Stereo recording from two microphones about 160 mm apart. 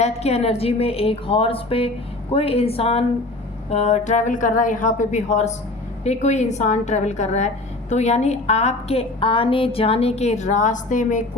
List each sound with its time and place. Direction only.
0.0 s a woman's voice: 40° left (ahead or behind)